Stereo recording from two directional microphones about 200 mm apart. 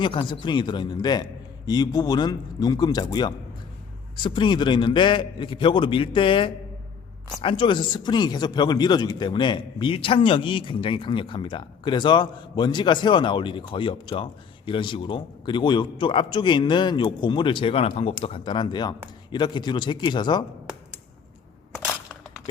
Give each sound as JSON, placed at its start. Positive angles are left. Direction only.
{"t": 0.0, "sound": "speech", "side_deg": 25}